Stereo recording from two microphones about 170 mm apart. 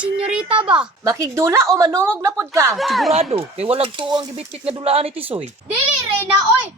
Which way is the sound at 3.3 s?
35° right (ahead or behind).